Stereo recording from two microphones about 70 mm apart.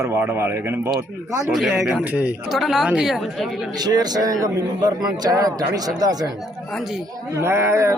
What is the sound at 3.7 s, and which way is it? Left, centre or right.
A man's voice, right.